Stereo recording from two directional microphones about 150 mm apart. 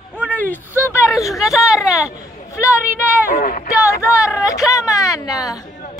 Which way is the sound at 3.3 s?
70° left (ahead or behind).